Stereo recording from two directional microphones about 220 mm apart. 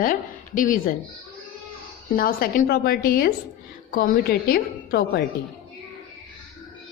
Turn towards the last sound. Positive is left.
turn(degrees=45)  # may be behind; listen again after turning